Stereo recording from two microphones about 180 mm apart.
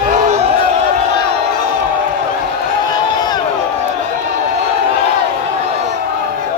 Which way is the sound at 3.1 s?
25° left (ahead or behind).